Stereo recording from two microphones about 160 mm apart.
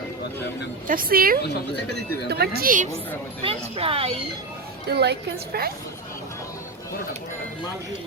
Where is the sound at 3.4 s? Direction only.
35° right (ahead or behind).